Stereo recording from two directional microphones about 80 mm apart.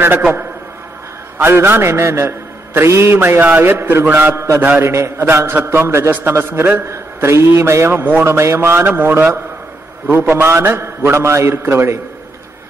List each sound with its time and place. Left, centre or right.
1.4 s a man's voice: right